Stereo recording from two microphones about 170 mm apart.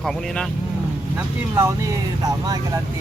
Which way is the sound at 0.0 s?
Centre (ahead or behind).